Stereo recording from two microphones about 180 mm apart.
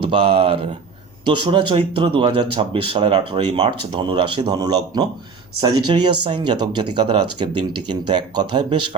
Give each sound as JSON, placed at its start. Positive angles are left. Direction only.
{"t": 0.0, "sound": "speech", "side_deg": -30}